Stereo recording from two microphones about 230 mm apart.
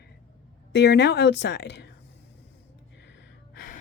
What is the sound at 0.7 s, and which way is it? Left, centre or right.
Speech, left.